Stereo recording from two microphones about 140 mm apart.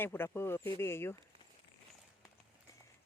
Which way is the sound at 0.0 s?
15° left (ahead or behind).